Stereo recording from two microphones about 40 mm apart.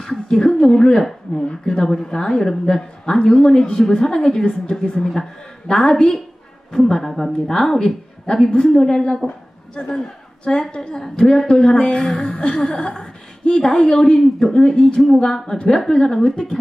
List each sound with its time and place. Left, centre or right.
0.0 s a woman's voice: centre
6.7 s a woman's voice: centre
16.3 s a woman's voice: left